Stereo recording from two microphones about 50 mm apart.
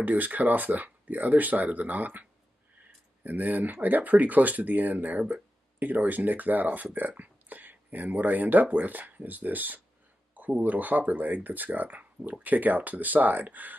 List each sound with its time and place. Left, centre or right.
0.0 s speech: right
3.3 s speech: right